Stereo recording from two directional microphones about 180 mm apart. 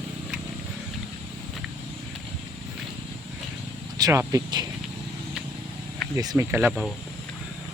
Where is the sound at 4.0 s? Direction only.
15° right (ahead or behind).